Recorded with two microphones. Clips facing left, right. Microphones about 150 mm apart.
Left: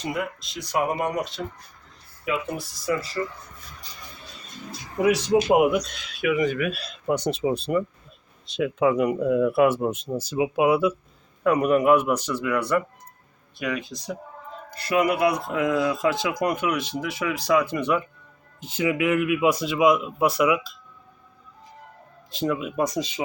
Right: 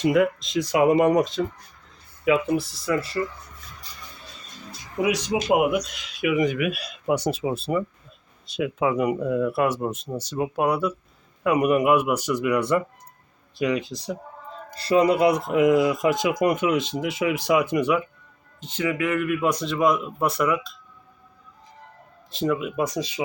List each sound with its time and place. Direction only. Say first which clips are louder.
0.0 s speech: right 9 dB; 90° right
5.0 s speech: left 3 dB; 15° right (ahead or behind); by 10.9 s centre (ahead or behind)
11.4 s speech: left 1 dB; 10° right (ahead or behind)
18.6 s speech: left 2 dB; 10° left (ahead or behind)
22.3 s speech: right 2 dB; centre (ahead or behind)